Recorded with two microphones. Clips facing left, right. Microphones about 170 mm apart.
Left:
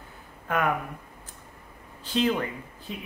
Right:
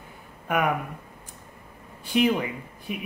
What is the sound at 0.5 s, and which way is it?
Speech, 15° right (ahead or behind).